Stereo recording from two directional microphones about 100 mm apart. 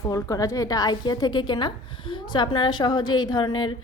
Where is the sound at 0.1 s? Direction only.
35° left (ahead or behind).